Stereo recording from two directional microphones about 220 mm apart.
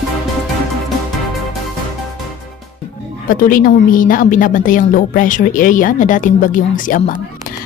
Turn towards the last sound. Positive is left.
turn(degrees=35)  # may be behind; listen again after turning